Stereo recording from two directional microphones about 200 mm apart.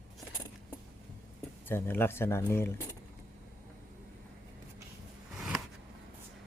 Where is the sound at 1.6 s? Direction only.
10° left (ahead or behind).